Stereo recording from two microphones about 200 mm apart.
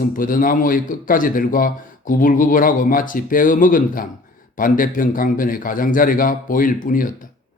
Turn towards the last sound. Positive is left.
turn(degrees=45)  # may be behind; listen again after turning